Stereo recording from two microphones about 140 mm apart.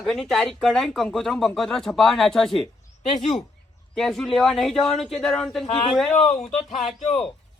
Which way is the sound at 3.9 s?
Centre (ahead or behind).